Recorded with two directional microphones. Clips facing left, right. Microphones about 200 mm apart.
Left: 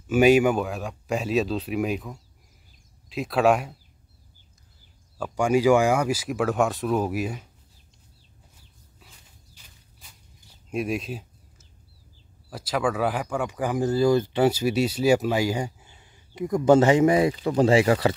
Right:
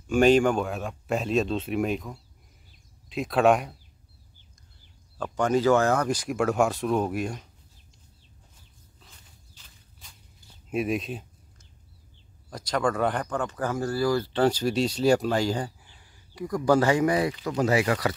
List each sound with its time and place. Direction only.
0.1 s speech: 10° left (ahead or behind)
5.1 s speech: 10° left (ahead or behind)
9.0 s horse: 5° left (ahead or behind)
10.7 s a sound: centre (ahead or behind)
12.4 s speech: 5° left (ahead or behind)
15.8 s speech: 25° left (ahead or behind)